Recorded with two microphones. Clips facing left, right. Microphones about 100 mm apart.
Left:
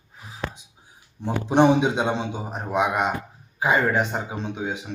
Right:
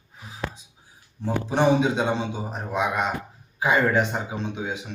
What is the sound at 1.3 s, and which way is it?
Speech, 20° left (ahead or behind).